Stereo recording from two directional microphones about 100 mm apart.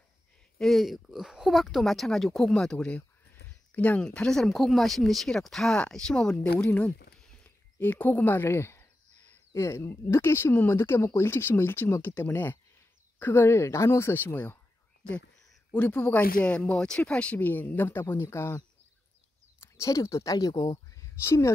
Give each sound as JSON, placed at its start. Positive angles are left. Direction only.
{"t": 0.6, "sound": "speech", "side_deg": 0}
{"t": 15.7, "sound": "speech", "side_deg": 15}
{"t": 19.6, "sound": "a woman's voice", "side_deg": 30}